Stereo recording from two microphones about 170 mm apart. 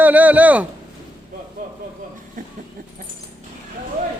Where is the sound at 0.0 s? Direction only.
10° right (ahead or behind).